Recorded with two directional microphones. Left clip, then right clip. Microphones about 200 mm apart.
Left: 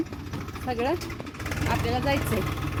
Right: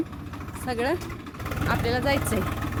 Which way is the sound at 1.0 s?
55° right (ahead or behind).